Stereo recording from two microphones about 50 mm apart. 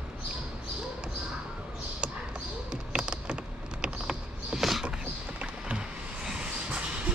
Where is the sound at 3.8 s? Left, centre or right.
Right.